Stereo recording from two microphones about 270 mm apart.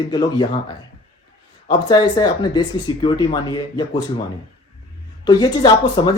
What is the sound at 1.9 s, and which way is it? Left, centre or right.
Speech, centre.